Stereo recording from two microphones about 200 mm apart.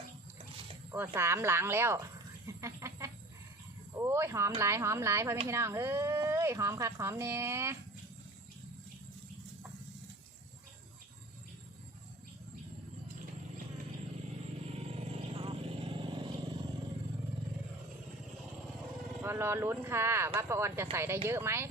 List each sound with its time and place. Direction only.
0.9 s speech: 10° right (ahead or behind)
2.5 s chicken: 15° right (ahead or behind)
3.9 s speech: 15° right (ahead or behind)
14.8 s vehicle: 30° right (ahead or behind)
19.2 s speech: 10° right (ahead or behind)